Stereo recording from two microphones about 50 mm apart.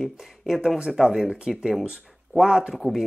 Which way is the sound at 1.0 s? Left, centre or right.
Centre.